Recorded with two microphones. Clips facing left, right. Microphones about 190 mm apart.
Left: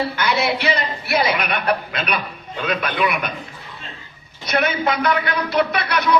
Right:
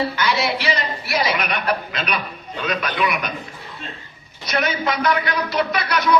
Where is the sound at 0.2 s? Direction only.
55° left (ahead or behind).